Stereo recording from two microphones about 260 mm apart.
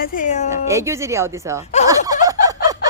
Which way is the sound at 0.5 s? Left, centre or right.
Centre.